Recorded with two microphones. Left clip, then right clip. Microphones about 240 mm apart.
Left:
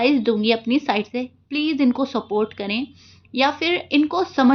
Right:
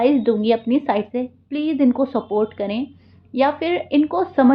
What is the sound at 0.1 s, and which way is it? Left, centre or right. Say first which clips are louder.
A woman's voice: right 2 dB; left.